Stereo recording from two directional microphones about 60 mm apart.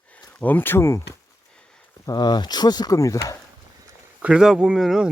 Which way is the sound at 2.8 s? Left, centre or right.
Left.